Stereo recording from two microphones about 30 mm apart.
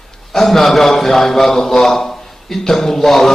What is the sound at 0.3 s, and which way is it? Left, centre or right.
A man's voice, centre.